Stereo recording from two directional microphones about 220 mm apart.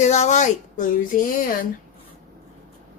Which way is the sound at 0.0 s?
30° left (ahead or behind).